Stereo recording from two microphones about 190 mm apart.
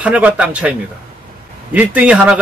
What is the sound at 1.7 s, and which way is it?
Speech, 5° right (ahead or behind).